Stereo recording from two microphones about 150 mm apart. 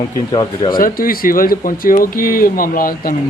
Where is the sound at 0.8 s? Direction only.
70° left (ahead or behind).